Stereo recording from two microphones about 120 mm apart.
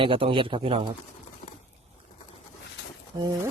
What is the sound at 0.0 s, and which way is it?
Speech, 45° right (ahead or behind).